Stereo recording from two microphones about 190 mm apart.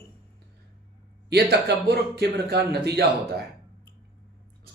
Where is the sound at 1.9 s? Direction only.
60° right (ahead or behind).